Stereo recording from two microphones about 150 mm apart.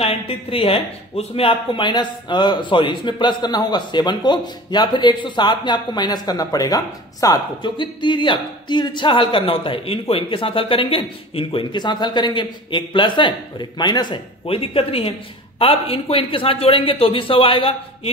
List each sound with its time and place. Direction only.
0.0 s speech: 40° left (ahead or behind)